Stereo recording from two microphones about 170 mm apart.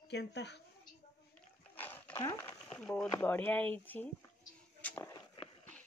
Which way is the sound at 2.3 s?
15° left (ahead or behind).